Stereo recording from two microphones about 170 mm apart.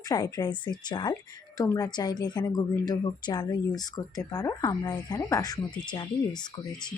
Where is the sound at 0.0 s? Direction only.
20° left (ahead or behind).